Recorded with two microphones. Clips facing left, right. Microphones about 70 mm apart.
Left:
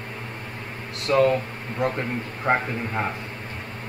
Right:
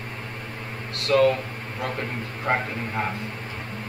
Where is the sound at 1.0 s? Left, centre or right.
Centre.